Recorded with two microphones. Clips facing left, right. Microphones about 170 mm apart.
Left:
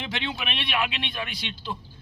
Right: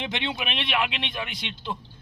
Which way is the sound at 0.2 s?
15° right (ahead or behind).